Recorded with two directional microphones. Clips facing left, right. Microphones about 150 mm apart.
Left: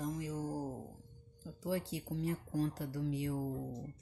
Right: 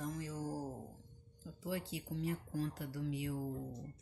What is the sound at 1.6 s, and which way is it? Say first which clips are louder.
Speech: left 4 dB; 40° left (ahead or behind).